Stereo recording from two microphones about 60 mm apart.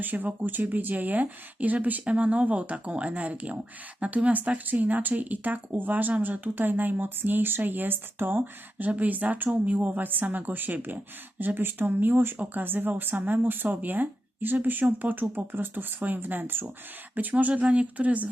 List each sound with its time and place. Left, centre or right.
0.0 s speech: right